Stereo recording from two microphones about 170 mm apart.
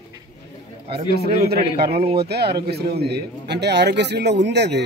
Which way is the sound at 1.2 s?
70° right (ahead or behind).